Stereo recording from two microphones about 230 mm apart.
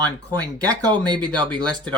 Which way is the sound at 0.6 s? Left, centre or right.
Centre.